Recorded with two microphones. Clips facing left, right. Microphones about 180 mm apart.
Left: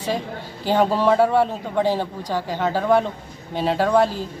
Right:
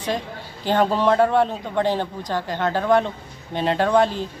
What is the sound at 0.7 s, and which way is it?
A man's voice, 10° left (ahead or behind).